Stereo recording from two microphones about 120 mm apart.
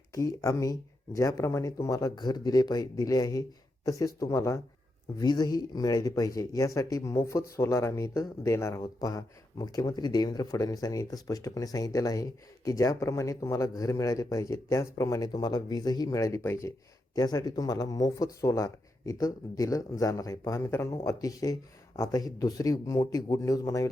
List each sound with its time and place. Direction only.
0.1 s speech: 25° left (ahead or behind)
5.2 s speech: 35° left (ahead or behind)
17.2 s speech: 35° left (ahead or behind)